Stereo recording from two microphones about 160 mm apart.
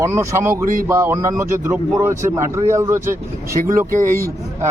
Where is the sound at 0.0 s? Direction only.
15° right (ahead or behind).